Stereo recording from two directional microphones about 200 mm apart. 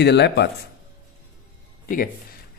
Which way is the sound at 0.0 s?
55° left (ahead or behind).